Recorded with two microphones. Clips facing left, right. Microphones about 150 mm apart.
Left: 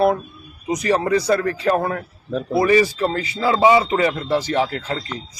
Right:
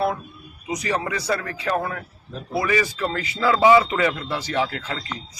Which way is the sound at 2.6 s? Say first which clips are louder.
Left 6 dB; 30° left (ahead or behind).